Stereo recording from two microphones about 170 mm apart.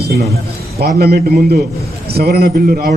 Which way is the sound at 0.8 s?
65° right (ahead or behind).